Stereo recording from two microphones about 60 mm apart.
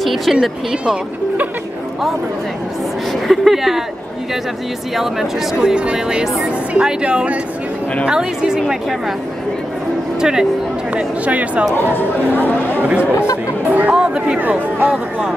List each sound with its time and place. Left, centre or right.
0.0 s speech: centre
3.1 s a woman's voice: centre
4.9 s speech: centre
11.0 s speech: right
11.9 s speech: left
12.8 s speech: right
13.7 s chatter: right
13.9 s speech: centre
14.4 s speech: right
14.9 s speech: centre